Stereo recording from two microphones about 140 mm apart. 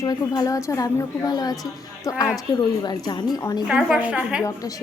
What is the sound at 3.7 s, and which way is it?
Speech, 5° right (ahead or behind).